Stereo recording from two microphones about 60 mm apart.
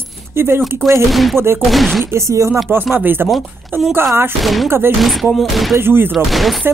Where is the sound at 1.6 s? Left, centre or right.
Centre.